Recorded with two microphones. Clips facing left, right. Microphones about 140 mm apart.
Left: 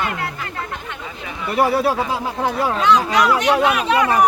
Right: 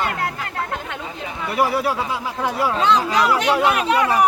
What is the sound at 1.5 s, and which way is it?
Speech, 25° left (ahead or behind).